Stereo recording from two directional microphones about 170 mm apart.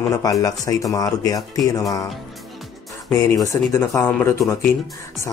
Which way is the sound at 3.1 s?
15° left (ahead or behind).